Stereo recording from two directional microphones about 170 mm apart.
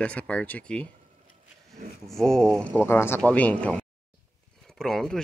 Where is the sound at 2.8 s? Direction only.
15° left (ahead or behind).